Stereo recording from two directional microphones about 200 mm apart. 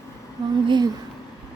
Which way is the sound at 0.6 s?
20° right (ahead or behind).